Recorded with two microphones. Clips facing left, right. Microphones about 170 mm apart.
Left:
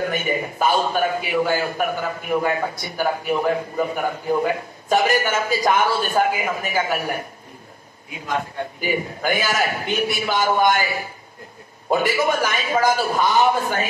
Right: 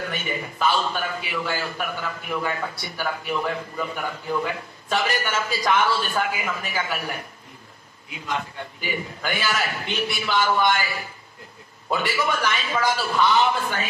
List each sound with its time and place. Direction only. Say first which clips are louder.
0.0 s a man's voice: left 7 dB; 50° left (ahead or behind)
8.3 s a man's voice: left 4 dB; 45° left (ahead or behind)